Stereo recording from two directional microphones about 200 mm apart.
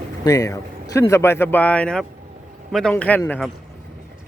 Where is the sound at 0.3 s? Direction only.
15° left (ahead or behind).